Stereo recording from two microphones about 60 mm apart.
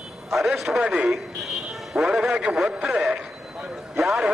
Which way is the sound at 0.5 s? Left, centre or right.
Centre.